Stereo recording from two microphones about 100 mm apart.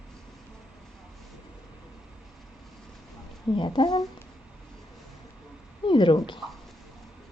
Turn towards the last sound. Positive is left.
turn(degrees=0)  # may be behind; listen again after turning